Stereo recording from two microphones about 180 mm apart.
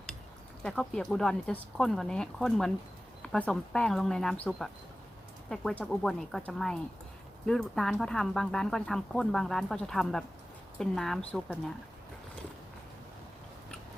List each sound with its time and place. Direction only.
0.6 s speech: 5° left (ahead or behind)